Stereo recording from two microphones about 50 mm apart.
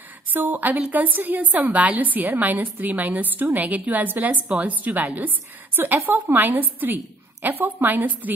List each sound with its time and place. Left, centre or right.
0.3 s a woman's voice: right